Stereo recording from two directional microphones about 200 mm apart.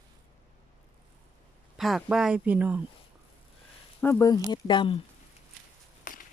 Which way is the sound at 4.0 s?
15° left (ahead or behind).